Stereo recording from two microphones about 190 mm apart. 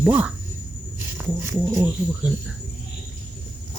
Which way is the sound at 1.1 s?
15° right (ahead or behind).